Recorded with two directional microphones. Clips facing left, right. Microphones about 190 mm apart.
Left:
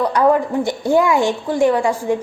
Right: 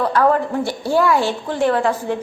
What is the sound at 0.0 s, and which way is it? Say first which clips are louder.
A woman's voice: left 1 dB; 15° left (ahead or behind).